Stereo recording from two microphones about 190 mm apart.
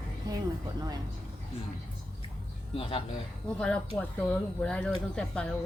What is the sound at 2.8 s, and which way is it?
Speech, 30° left (ahead or behind).